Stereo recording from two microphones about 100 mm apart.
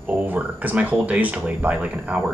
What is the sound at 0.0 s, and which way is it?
Speech, 15° right (ahead or behind).